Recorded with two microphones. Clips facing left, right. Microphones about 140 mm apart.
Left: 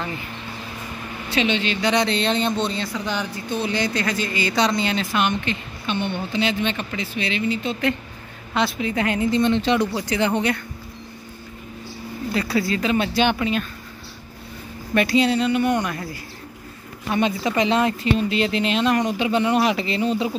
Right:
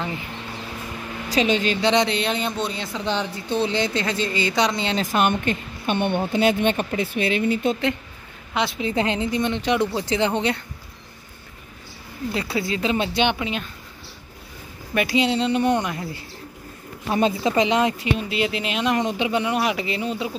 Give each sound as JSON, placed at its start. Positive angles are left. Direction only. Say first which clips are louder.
{"t": 1.3, "sound": "speech", "louder": "right 2 dB", "side_deg": -40}
{"t": 1.8, "sound": "speech", "louder": "right 1 dB", "side_deg": -20}
{"t": 3.1, "sound": "a woman's voice", "louder": "right 2 dB", "side_deg": -30}
{"t": 4.9, "sound": "speech", "louder": "right 1 dB", "side_deg": -45}
{"t": 8.5, "sound": "a woman's voice", "louder": "left 1 dB", "side_deg": -20}
{"t": 12.4, "sound": "a woman's voice", "louder": "left 3 dB", "side_deg": -20}
{"t": 15.0, "sound": "a woman's voice", "louder": "left 2 dB", "side_deg": -15}
{"t": 15.8, "sound": "speech", "louder": "left 1 dB", "side_deg": -15}
{"t": 17.1, "sound": "speech", "louder": "right 1 dB", "side_deg": -30}
{"t": 18.9, "sound": "speech", "louder": "left 2 dB", "side_deg": -20}